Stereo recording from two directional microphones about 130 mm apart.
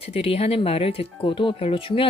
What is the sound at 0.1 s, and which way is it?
Speech, 50° left (ahead or behind).